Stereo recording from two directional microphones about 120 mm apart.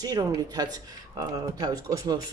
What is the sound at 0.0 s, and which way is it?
Speech, 35° right (ahead or behind).